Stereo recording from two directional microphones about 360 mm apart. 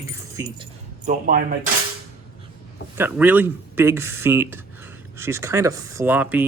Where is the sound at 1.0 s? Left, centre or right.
Right.